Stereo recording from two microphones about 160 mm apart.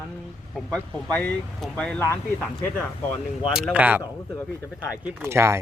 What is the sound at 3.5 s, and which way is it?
Speech, 5° right (ahead or behind).